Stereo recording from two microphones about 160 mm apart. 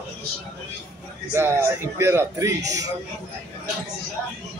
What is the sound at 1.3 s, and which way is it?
A man's voice, 15° right (ahead or behind).